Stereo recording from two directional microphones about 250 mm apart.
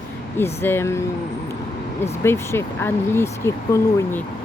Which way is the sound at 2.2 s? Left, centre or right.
Centre.